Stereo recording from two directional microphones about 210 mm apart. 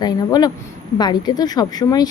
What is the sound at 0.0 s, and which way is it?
A woman's voice, 20° left (ahead or behind).